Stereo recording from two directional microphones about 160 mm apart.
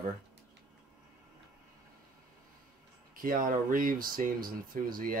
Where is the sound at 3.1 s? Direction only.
60° right (ahead or behind).